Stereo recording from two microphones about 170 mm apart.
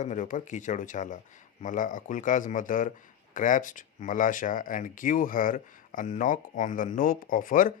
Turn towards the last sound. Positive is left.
turn(degrees=55)  # may be behind; listen again after turning